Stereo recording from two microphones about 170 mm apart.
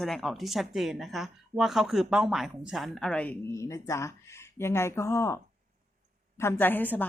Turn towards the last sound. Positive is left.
turn(degrees=10)  # may be behind; listen again after turning